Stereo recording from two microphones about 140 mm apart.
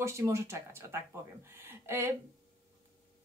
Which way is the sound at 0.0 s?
20° right (ahead or behind).